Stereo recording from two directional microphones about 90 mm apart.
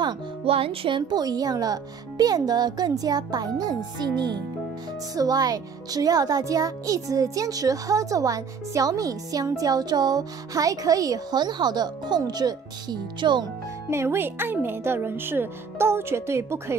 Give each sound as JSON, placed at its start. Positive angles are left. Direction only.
{"t": 0.5, "sound": "a child's voice", "side_deg": -90}
{"t": 5.1, "sound": "a child's voice", "side_deg": -45}
{"t": 13.8, "sound": "speech", "side_deg": -30}